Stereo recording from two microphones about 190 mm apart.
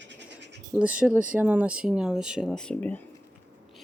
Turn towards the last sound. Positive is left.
turn(degrees=10)  # may be behind; listen again after turning